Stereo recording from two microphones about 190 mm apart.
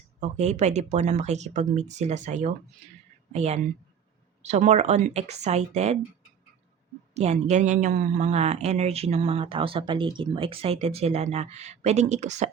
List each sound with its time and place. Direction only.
0.2 s speech: 35° right (ahead or behind)
7.1 s speech: 35° right (ahead or behind)